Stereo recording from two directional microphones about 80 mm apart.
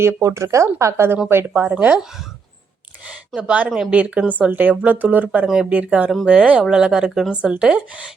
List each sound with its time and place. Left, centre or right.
0.0 s speech: right
1.7 s speech: centre
3.1 s a sound: centre
3.7 s speech: centre